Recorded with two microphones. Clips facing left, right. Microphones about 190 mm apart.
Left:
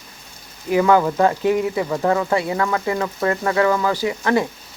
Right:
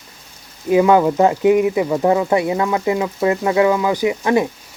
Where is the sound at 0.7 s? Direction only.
20° right (ahead or behind).